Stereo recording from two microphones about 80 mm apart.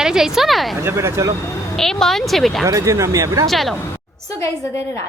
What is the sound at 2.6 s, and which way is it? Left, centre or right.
Speech, right.